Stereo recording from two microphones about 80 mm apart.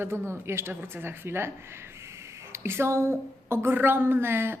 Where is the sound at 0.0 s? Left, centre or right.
Right.